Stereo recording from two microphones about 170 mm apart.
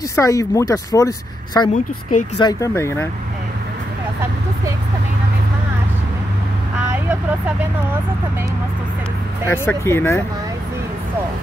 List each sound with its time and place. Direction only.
0.1 s speech: 20° left (ahead or behind)
1.7 s speech: 50° left (ahead or behind)
2.3 s speech: 25° left (ahead or behind)
9.5 s speech: 15° left (ahead or behind)